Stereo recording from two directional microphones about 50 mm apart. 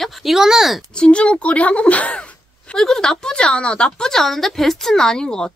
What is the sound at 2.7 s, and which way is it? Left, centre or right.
Speech, centre.